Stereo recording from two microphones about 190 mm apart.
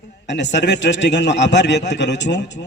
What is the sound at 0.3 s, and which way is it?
A man's voice, 65° left (ahead or behind).